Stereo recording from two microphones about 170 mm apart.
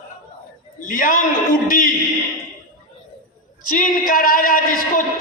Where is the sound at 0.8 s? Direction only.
55° left (ahead or behind).